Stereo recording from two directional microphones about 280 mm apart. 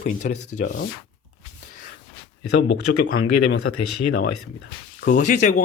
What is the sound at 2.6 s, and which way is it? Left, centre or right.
Speech, left.